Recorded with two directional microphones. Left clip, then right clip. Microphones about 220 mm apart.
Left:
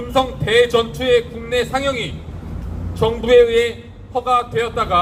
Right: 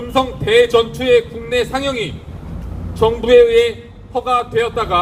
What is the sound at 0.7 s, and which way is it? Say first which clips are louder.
A man's voice: right 3 dB; 40° right (ahead or behind).